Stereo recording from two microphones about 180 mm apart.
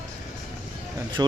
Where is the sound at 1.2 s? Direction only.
20° right (ahead or behind).